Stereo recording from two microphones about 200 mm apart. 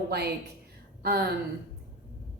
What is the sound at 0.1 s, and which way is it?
A woman's voice, 50° right (ahead or behind).